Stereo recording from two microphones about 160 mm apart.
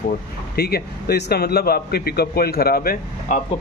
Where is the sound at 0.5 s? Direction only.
80° left; by 3.4 s 60° left (ahead or behind).